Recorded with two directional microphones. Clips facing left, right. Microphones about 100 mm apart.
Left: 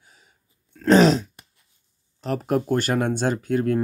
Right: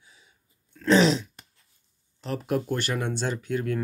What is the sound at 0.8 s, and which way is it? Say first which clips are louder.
Throat clearing: left 4 dB; 45° left (ahead or behind).